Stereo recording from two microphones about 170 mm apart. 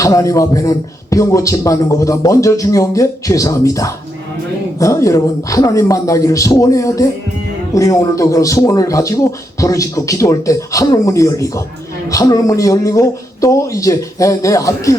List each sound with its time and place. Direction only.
0.0 s speech: 20° left (ahead or behind)